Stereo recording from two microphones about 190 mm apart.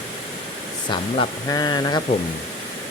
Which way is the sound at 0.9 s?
25° left (ahead or behind).